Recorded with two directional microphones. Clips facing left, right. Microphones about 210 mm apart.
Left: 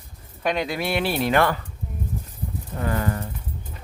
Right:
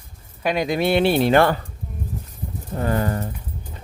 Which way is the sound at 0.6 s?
25° right (ahead or behind).